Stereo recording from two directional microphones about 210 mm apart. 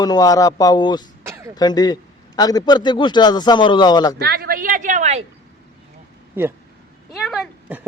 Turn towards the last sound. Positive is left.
turn(degrees=-5)  # may be behind; listen again after turning